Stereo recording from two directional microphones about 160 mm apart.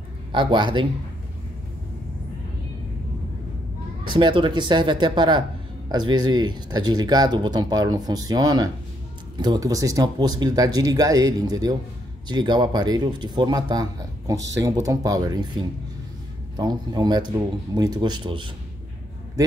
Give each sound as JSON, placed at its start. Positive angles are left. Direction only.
{"t": 0.3, "sound": "speech", "side_deg": -30}
{"t": 4.0, "sound": "speech", "side_deg": -30}
{"t": 16.5, "sound": "speech", "side_deg": -25}